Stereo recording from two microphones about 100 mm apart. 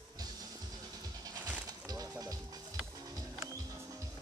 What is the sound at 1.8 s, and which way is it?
Music, 40° right (ahead or behind).